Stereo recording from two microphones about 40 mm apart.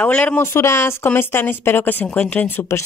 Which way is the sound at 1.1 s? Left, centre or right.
Left.